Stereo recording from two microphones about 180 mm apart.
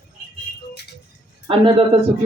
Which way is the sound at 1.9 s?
35° right (ahead or behind).